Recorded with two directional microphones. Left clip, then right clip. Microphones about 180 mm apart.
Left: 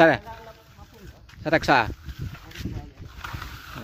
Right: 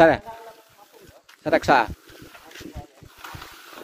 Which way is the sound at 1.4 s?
Centre (ahead or behind).